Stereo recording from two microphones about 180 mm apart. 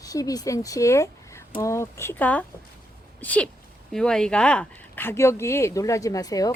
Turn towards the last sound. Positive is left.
turn(degrees=20)  # may be behind; listen again after turning